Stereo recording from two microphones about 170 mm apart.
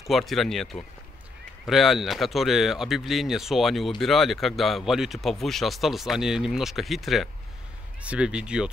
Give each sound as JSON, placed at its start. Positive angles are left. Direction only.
{"t": 0.1, "sound": "speech", "side_deg": 0}